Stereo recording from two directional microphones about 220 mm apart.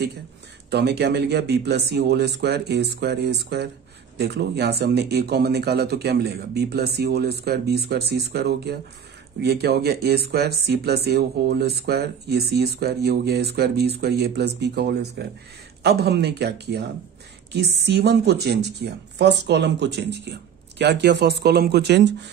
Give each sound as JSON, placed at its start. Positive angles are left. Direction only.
{"t": 0.7, "sound": "speech", "side_deg": -50}